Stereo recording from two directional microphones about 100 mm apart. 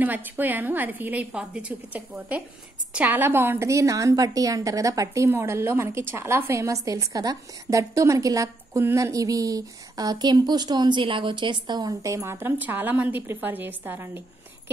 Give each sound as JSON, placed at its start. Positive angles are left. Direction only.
{"t": 0.0, "sound": "a woman's voice", "side_deg": -20}